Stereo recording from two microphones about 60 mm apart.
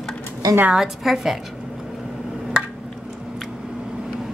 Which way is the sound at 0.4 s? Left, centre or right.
Right.